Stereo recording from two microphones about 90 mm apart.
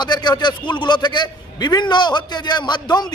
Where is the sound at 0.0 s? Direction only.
55° left (ahead or behind).